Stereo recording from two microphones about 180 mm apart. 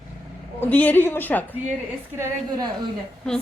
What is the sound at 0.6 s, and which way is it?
Speech, 10° left (ahead or behind).